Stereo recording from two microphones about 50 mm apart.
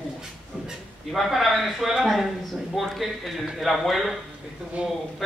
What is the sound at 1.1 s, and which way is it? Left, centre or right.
A man's voice, centre.